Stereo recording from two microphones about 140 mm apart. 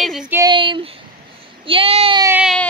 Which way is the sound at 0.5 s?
35° right (ahead or behind).